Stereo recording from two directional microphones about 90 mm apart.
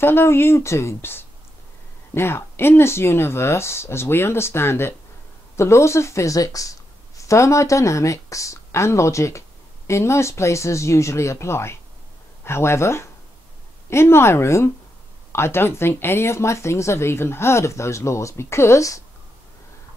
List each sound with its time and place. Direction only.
0.0 s speech: 25° left (ahead or behind)